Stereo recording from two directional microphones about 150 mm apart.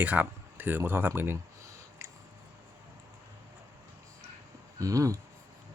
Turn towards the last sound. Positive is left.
turn(degrees=-20)  # may be behind; listen again after turning